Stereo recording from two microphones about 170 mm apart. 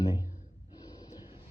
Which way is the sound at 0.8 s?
25° left (ahead or behind).